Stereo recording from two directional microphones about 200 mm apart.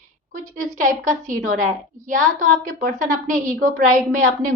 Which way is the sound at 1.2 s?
40° right (ahead or behind).